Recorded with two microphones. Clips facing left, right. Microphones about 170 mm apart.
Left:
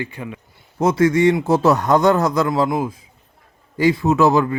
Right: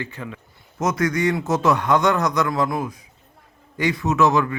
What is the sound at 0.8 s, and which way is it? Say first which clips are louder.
A man's voice: left 6 dB; 30° left (ahead or behind).